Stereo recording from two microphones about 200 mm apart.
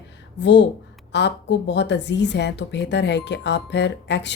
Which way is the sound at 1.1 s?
60° left (ahead or behind).